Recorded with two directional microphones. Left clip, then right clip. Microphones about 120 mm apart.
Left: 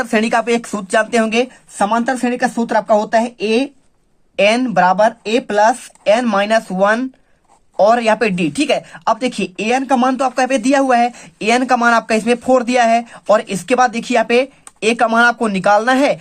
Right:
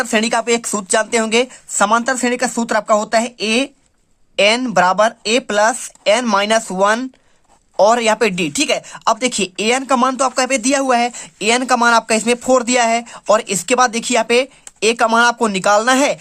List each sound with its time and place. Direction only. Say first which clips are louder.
0.0 s speech: left 1 dB; 25° right (ahead or behind)